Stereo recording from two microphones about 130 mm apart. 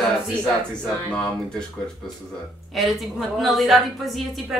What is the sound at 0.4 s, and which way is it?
Speech, 5° left (ahead or behind).